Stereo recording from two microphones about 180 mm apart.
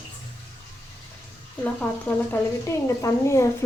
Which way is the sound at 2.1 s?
15° left (ahead or behind).